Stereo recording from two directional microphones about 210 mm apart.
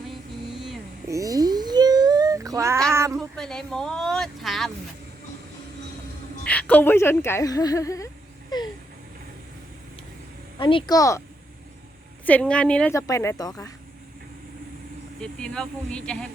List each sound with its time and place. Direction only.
0.5 s a sound: centre (ahead or behind)
1.0 s a sound: 15° right (ahead or behind)
3.2 s speech: 5° left (ahead or behind)
6.4 s a woman's voice: 5° left (ahead or behind)
10.6 s speech: 25° left (ahead or behind)
12.2 s a woman's voice: 5° left (ahead or behind)
15.2 s speech: 5° left (ahead or behind)